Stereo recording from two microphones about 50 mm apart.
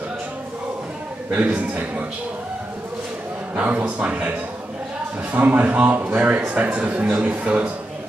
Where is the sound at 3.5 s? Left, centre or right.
Right.